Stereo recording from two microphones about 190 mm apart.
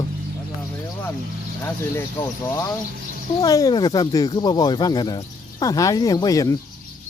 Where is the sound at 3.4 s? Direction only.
20° left (ahead or behind).